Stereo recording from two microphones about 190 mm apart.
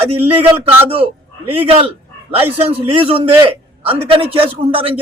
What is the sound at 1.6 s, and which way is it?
A man's voice, 30° right (ahead or behind).